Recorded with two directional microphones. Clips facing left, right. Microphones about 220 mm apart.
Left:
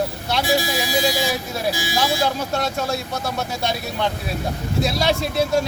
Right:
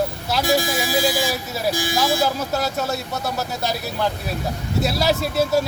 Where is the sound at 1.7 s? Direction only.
50° right (ahead or behind).